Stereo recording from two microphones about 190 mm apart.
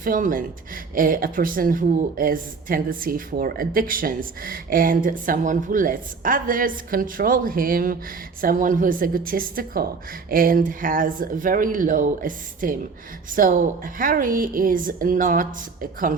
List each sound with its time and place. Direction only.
0.0 s speech: 45° right (ahead or behind)